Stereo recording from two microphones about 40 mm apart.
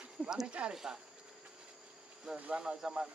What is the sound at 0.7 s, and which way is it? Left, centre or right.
Speech, centre.